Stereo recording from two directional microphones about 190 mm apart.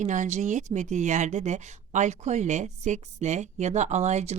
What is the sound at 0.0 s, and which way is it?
Speech, 40° right (ahead or behind).